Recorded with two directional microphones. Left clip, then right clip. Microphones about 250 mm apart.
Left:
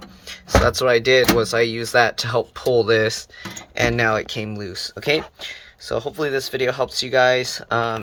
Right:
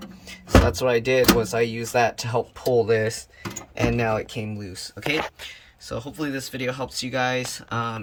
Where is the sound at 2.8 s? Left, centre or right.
Centre.